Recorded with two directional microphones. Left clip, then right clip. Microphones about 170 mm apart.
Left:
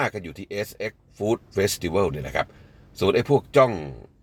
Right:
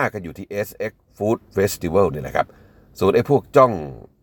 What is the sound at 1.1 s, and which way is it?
Speech, 35° right (ahead or behind).